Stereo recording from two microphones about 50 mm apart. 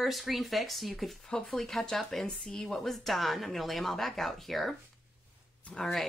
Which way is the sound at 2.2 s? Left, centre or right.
Centre.